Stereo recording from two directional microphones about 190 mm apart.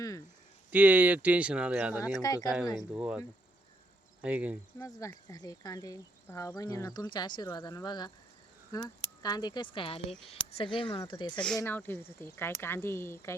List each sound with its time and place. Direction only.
0.7 s speech: 10° right (ahead or behind)
2.1 s speech: 20° left (ahead or behind)
2.9 s speech: 5° right (ahead or behind)
4.2 s speech: 5° right (ahead or behind)
4.8 s speech: 15° left (ahead or behind)
11.5 s speech: 10° left (ahead or behind)